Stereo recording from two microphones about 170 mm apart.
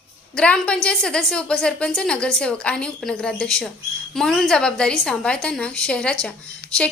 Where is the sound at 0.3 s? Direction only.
5° left (ahead or behind).